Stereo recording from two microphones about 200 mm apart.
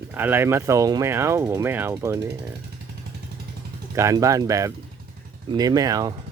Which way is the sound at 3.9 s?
15° right (ahead or behind).